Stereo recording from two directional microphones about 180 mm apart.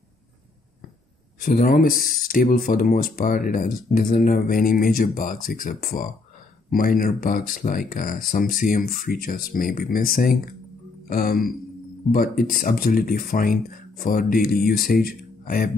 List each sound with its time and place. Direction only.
1.4 s speech: 55° left (ahead or behind)